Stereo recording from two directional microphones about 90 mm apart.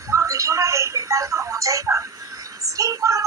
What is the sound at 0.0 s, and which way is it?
Music, 35° right (ahead or behind).